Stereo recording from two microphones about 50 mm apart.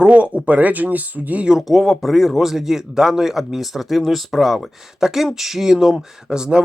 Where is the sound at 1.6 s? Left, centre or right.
Centre.